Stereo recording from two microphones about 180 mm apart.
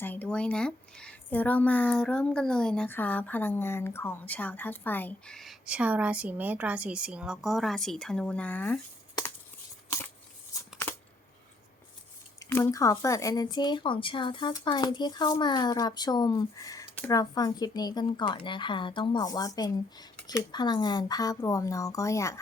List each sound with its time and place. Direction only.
0.0 s speech: 10° left (ahead or behind)
10.5 s scissors: 20° left (ahead or behind)
12.4 s speech: 15° left (ahead or behind)